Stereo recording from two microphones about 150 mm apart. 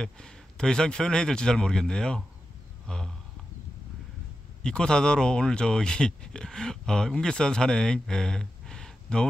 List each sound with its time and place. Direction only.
0.0 s speech: 5° left (ahead or behind)
2.9 s a sound: 5° left (ahead or behind)
4.6 s speech: 5° left (ahead or behind)